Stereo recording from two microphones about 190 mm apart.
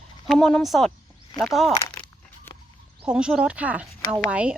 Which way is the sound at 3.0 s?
5° right (ahead or behind).